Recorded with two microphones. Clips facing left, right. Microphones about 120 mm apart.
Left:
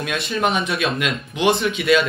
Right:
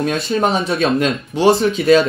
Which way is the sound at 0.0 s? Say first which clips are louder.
Right 5 dB; 35° right (ahead or behind).